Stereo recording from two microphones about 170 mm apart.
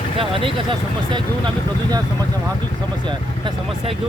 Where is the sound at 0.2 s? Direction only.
30° right (ahead or behind).